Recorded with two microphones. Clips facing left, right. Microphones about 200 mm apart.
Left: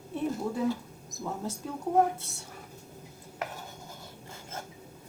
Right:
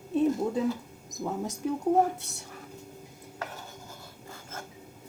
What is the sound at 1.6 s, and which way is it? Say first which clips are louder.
Speech: right 12 dB; 15° right (ahead or behind).